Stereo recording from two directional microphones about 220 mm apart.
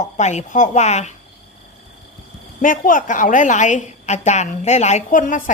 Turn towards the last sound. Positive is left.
turn(degrees=35)  # may be behind; listen again after turning